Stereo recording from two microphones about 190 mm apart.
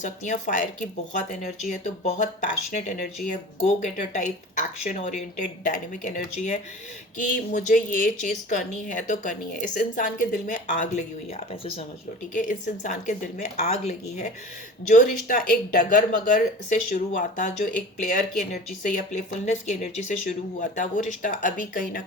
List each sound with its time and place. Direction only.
0.0 s a woman's voice: 40° left (ahead or behind)
11.3 s speech: 30° left (ahead or behind)
12.3 s a woman's voice: 45° left (ahead or behind)